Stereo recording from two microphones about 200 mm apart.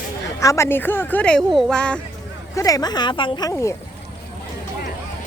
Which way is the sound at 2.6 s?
15° left (ahead or behind).